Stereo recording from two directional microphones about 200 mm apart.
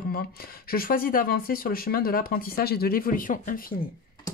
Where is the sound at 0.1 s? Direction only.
50° left (ahead or behind).